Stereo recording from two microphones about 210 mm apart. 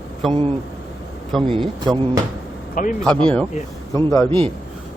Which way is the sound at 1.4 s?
25° right (ahead or behind).